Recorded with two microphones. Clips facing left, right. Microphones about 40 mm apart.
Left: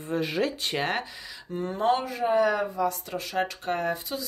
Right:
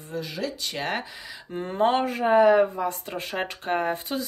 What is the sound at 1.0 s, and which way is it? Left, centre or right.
Speech, centre.